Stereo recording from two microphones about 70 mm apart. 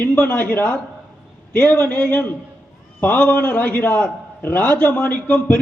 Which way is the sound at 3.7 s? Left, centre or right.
Left.